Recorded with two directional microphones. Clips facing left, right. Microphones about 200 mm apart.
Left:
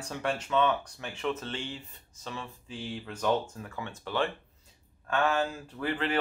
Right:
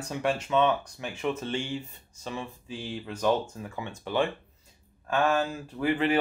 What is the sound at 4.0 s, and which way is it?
Speech, 15° right (ahead or behind).